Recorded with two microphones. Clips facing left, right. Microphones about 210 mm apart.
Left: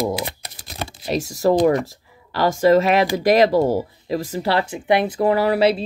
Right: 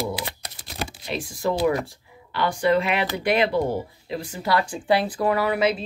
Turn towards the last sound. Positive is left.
turn(degrees=30)  # may be behind; listen again after turning